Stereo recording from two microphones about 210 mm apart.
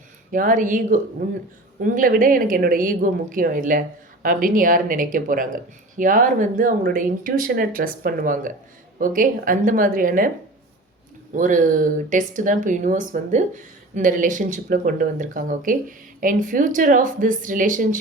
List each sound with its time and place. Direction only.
0.3 s speech: 40° right (ahead or behind)
11.3 s speech: 40° right (ahead or behind)